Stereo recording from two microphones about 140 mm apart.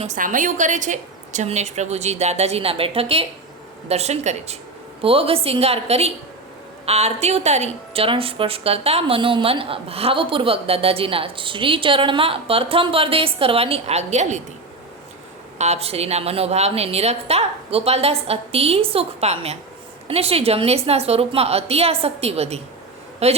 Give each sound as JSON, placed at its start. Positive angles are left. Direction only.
{"t": 0.0, "sound": "a woman's voice", "side_deg": -65}
{"t": 5.0, "sound": "a woman's voice", "side_deg": -40}
{"t": 15.5, "sound": "a woman's voice", "side_deg": -50}